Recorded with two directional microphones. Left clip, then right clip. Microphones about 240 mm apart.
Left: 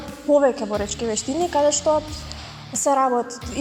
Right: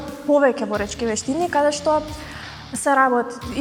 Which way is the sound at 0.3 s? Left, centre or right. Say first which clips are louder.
Right 1 dB; left.